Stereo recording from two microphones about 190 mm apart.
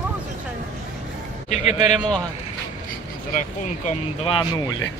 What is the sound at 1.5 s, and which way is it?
Speech, 35° left (ahead or behind).